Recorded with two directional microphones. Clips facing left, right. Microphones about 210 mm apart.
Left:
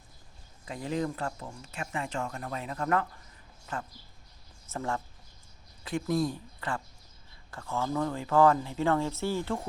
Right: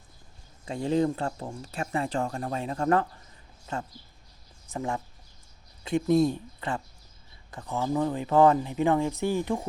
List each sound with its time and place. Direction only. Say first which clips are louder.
0.6 s speech: right 7 dB; 30° right (ahead or behind)